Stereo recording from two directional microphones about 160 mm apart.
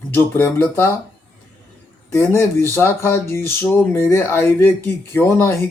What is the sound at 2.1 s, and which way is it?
Speech, 15° left (ahead or behind).